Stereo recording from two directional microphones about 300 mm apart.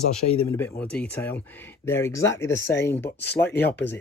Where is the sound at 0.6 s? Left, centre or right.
Centre.